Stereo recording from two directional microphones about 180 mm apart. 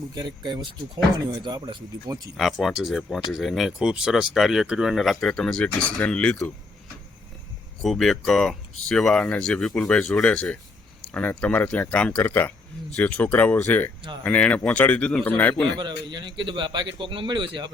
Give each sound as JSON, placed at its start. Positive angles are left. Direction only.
{"t": 0.1, "sound": "speech", "side_deg": -25}
{"t": 2.3, "sound": "speech", "side_deg": 0}
{"t": 7.8, "sound": "speech", "side_deg": 0}
{"t": 16.0, "sound": "speech", "side_deg": -25}